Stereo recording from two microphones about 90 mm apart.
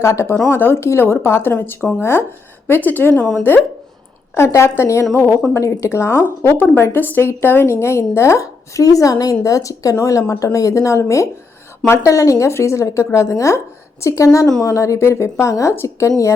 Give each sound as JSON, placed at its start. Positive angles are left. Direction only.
{"t": 0.0, "sound": "a woman's voice", "side_deg": 30}
{"t": 4.4, "sound": "a woman's voice", "side_deg": 30}